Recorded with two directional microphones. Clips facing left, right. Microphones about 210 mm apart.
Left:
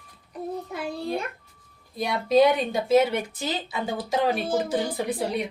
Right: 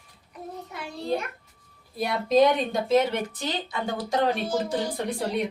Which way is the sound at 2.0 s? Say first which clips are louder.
Left 1 dB; centre (ahead or behind).